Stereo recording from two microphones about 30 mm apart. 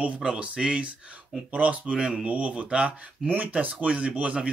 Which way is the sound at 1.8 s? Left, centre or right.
Right.